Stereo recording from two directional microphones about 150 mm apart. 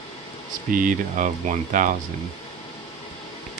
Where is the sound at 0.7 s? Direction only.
60° right (ahead or behind).